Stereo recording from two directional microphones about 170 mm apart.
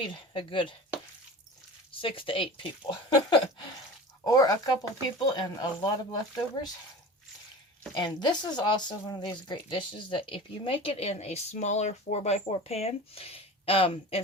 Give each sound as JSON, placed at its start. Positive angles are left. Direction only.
{"t": 0.0, "sound": "speech", "side_deg": 30}
{"t": 1.9, "sound": "speech", "side_deg": 30}
{"t": 7.9, "sound": "speech", "side_deg": 25}